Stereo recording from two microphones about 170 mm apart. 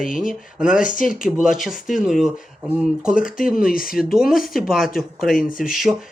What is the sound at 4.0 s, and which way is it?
Speech, centre (ahead or behind).